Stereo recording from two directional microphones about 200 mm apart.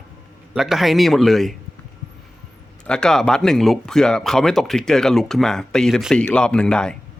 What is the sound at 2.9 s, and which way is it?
Speech, 5° left (ahead or behind).